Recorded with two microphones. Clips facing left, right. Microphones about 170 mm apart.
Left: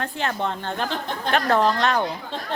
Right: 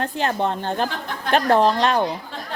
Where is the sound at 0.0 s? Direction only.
35° right (ahead or behind).